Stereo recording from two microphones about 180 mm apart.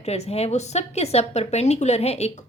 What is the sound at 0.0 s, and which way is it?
A woman's voice, 35° left (ahead or behind).